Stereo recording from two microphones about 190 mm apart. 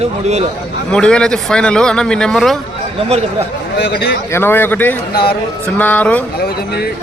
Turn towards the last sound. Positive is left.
turn(degrees=10)  # may be behind; listen again after turning